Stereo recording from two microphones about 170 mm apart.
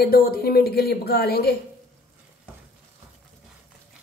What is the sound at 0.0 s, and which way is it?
Speech, 60° left (ahead or behind).